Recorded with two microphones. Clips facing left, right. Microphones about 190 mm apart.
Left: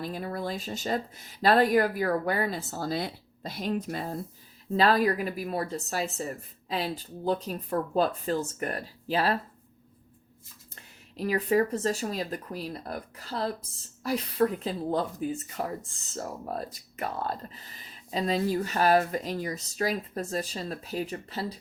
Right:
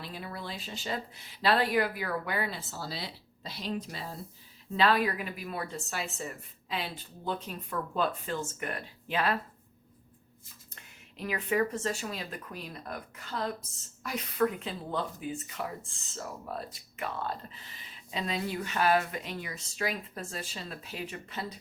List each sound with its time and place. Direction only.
0.0 s speech: 45° left (ahead or behind)
4.8 s speech: 40° left (ahead or behind)
10.8 s speech: 35° left (ahead or behind)